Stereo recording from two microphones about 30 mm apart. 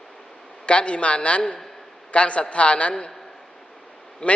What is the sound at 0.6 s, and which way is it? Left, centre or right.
A man's voice, left.